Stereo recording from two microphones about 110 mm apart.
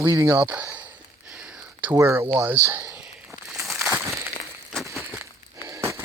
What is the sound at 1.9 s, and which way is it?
Speech, 25° right (ahead or behind).